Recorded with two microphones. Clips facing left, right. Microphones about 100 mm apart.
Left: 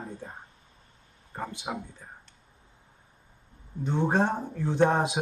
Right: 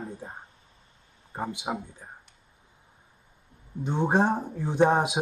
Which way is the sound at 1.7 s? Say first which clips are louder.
Right 2 dB; 20° right (ahead or behind).